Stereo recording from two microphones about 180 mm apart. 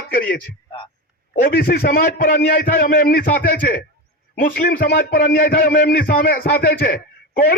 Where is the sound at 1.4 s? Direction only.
55° left (ahead or behind).